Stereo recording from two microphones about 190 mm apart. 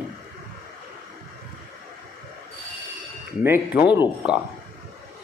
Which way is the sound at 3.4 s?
10° right (ahead or behind).